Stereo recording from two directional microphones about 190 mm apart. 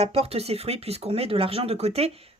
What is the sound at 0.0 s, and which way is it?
Speech, 30° right (ahead or behind).